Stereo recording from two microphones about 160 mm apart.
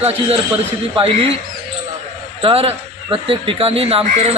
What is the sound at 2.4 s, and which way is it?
Speech, 35° right (ahead or behind).